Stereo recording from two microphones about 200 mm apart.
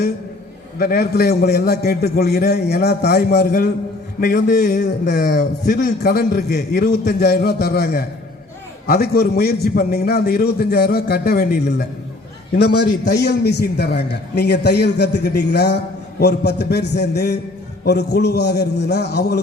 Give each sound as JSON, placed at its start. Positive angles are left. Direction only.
{"t": 0.8, "sound": "a man's voice", "side_deg": 50}